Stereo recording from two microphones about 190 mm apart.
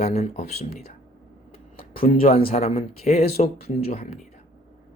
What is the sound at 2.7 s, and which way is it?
Speech, 35° left (ahead or behind).